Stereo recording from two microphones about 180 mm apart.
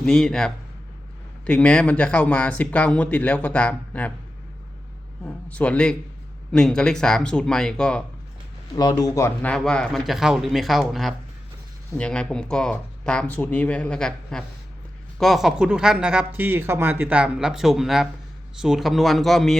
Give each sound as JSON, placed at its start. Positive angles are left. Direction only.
{"t": 0.0, "sound": "speech", "side_deg": 5}
{"t": 5.2, "sound": "speech", "side_deg": 5}
{"t": 8.7, "sound": "speech", "side_deg": 20}